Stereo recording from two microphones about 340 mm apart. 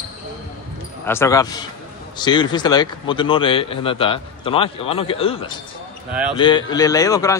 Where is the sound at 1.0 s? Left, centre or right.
Centre.